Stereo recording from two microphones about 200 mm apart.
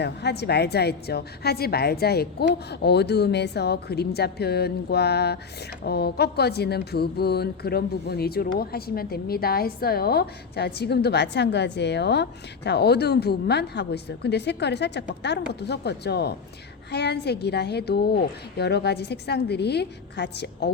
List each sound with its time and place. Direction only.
0.0 s a woman's voice: 55° left (ahead or behind)